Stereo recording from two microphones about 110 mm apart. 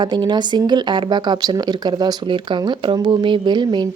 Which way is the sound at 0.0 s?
45° right (ahead or behind).